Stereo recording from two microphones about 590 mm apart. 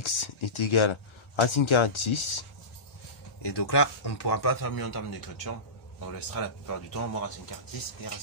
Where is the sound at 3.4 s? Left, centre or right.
Left.